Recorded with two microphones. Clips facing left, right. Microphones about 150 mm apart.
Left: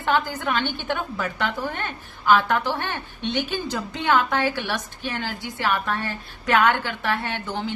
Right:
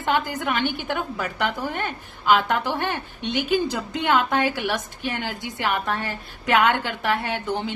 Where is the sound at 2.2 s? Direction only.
15° right (ahead or behind).